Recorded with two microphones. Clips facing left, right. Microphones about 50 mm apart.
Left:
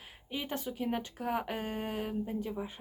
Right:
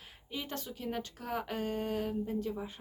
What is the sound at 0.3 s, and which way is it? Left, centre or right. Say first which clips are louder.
Speech: left 3 dB; centre.